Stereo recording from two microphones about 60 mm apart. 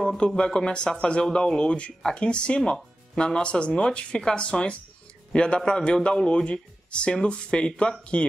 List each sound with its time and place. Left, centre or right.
0.4 s speech: centre